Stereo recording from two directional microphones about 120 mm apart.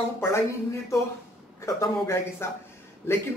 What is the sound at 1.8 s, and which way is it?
Speech, 20° left (ahead or behind).